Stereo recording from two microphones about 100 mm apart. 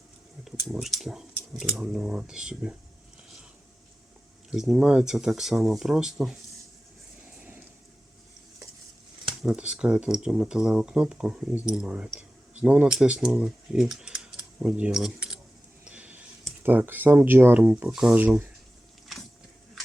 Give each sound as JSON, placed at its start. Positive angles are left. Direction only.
{"t": 0.4, "sound": "speech", "side_deg": -5}
{"t": 4.5, "sound": "speech", "side_deg": -5}
{"t": 9.4, "sound": "speech", "side_deg": -10}
{"t": 15.8, "sound": "a sound", "side_deg": -15}
{"t": 16.6, "sound": "speech", "side_deg": -20}